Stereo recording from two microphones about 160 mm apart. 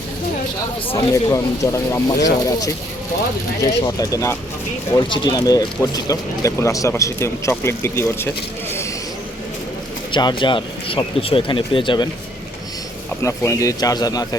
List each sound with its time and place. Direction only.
0.9 s speech: 20° left (ahead or behind)
10.1 s speech: 30° left (ahead or behind)
13.2 s speech: 20° left (ahead or behind)